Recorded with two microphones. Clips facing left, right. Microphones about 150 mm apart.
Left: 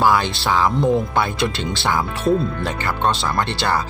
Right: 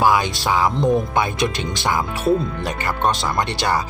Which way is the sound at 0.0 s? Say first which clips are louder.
Even; 15° right (ahead or behind).